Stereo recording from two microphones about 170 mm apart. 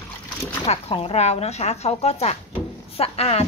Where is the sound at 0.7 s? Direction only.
40° left (ahead or behind).